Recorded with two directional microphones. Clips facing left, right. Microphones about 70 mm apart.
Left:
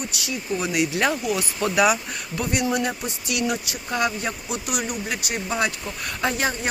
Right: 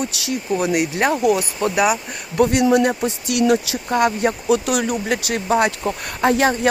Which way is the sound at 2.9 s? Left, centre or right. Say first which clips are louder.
Right 7 dB; right.